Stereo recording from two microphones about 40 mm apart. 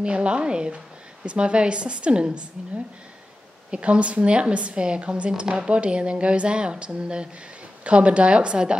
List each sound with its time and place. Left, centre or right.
0.0 s speech: right
3.7 s speech: right